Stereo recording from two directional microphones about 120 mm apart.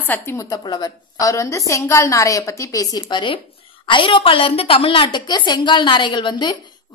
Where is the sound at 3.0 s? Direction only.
45° left (ahead or behind).